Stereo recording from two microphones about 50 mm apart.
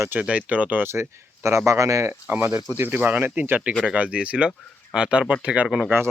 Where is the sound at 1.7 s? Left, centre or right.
Right.